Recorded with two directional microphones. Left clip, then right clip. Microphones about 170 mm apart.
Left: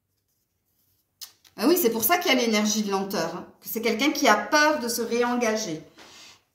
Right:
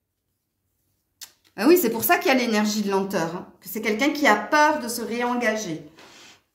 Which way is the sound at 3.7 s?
50° right (ahead or behind).